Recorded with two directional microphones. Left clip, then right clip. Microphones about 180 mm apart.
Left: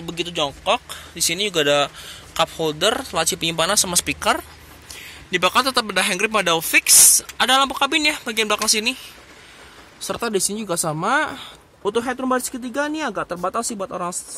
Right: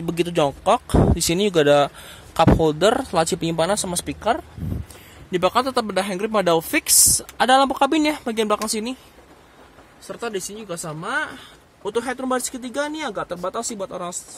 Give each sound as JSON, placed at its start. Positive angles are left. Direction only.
{"t": 0.0, "sound": "speech", "side_deg": -45}
{"t": 9.9, "sound": "speech", "side_deg": 40}
{"t": 11.8, "sound": "speech", "side_deg": 25}